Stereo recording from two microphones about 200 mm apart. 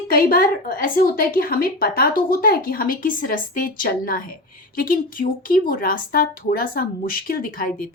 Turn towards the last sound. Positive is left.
turn(degrees=45)  # may be behind; listen again after turning